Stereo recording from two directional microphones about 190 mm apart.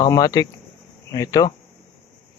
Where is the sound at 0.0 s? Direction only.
20° left (ahead or behind).